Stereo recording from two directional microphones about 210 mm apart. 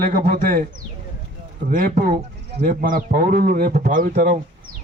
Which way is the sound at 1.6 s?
40° right (ahead or behind).